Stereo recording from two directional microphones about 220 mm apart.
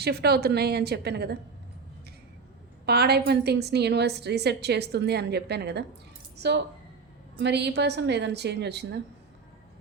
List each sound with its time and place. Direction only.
0.0 s a woman's voice: 45° right (ahead or behind)
2.8 s a woman's voice: 45° right (ahead or behind)